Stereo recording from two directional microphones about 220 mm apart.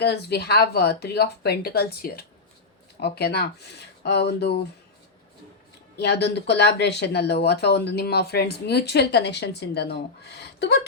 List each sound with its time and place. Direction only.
0.0 s speech: 50° left (ahead or behind)
6.0 s speech: 50° left (ahead or behind)